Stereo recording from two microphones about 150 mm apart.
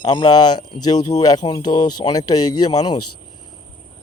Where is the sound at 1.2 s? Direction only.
25° left (ahead or behind).